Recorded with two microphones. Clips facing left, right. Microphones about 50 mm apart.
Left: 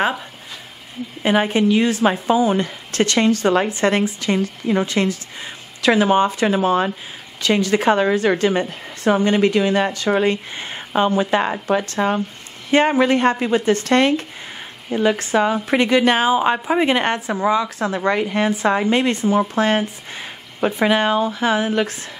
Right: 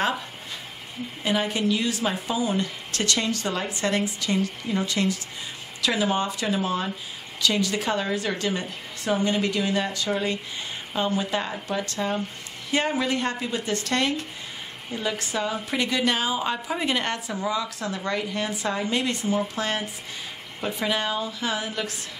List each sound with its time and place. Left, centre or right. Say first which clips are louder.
1.2 s a woman's voice: left 8 dB; left